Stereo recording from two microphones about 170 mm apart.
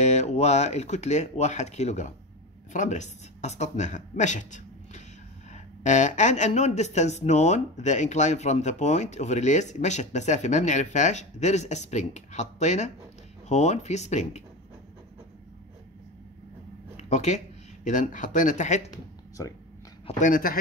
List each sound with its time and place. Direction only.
0.0 s speech: 40° left (ahead or behind)
16.9 s a sound: 40° left (ahead or behind)
17.8 s speech: 45° left (ahead or behind)
19.4 s speech: 20° left (ahead or behind)
20.1 s speech: 50° left (ahead or behind)